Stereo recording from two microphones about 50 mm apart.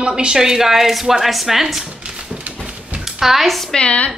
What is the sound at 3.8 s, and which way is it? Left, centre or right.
Speech, left.